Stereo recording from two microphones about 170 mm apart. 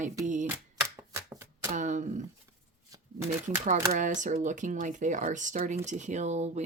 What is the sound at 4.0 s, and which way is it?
Speech, 45° right (ahead or behind).